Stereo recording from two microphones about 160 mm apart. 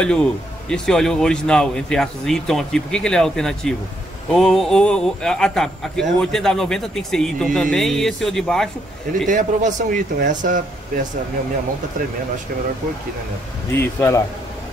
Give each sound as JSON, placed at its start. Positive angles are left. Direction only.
{"t": 0.0, "sound": "a man's voice", "side_deg": 5}
{"t": 9.3, "sound": "speech", "side_deg": -50}
{"t": 13.7, "sound": "a man's voice", "side_deg": 20}